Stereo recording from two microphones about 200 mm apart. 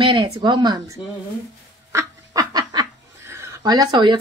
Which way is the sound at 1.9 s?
15° right (ahead or behind).